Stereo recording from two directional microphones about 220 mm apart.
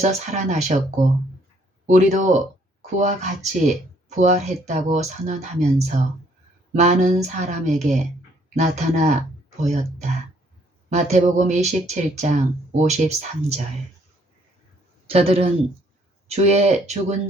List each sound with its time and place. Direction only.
0.0 s speech: 35° right (ahead or behind)
10.8 s speech: 35° right (ahead or behind)
15.0 s a man's voice: 25° right (ahead or behind)